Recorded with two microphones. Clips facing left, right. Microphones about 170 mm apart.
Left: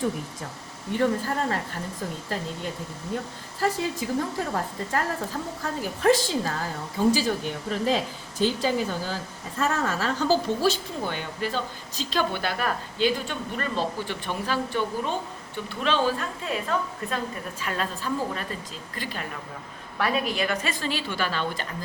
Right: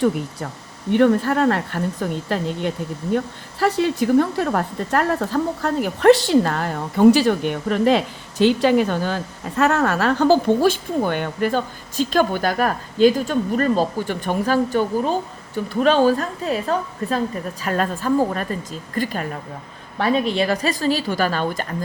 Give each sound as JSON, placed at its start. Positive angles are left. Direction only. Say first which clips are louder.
{"t": 0.9, "sound": "a woman's voice", "louder": "right 9 dB", "side_deg": -70}
{"t": 17.6, "sound": "a woman's voice", "louder": "right 8 dB", "side_deg": -50}
{"t": 20.0, "sound": "a woman's voice", "louder": "right 7 dB", "side_deg": -30}